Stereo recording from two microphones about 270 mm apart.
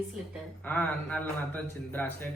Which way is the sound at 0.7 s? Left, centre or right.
Centre.